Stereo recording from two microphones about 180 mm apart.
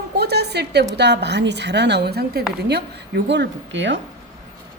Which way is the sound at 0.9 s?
70° right (ahead or behind).